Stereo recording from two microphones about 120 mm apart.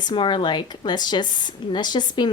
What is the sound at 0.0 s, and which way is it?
A woman's voice, 40° left (ahead or behind).